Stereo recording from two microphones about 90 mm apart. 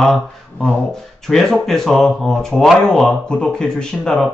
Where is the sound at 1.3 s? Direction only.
5° left (ahead or behind).